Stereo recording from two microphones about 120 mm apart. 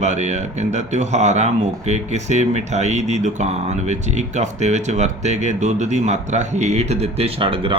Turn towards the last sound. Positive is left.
turn(degrees=-50)  # may be behind; listen again after turning